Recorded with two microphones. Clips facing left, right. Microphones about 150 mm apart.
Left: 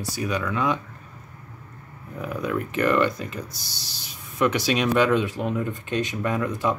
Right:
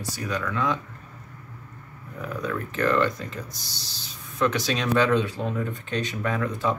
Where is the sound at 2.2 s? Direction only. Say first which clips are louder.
Left 3 dB; 15° left (ahead or behind).